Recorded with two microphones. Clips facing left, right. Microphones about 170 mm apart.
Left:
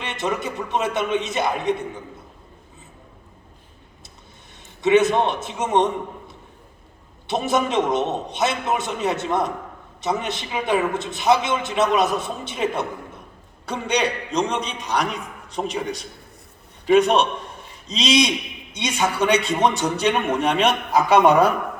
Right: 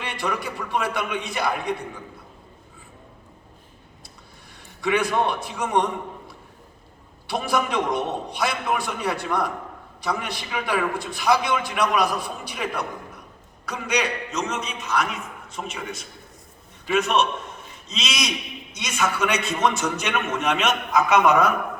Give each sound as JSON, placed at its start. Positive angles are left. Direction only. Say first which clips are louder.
{"t": 0.0, "sound": "a man's voice", "louder": "left 3 dB", "side_deg": 20}
{"t": 4.8, "sound": "a man's voice", "louder": "left 5 dB", "side_deg": 20}